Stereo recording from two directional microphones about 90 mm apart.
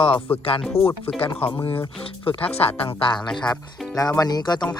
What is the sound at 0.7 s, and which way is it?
Speech, 90° left.